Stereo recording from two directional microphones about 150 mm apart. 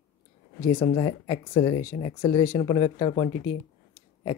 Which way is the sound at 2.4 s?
50° left (ahead or behind).